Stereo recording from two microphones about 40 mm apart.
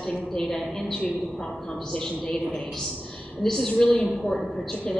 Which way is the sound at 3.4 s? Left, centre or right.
Centre.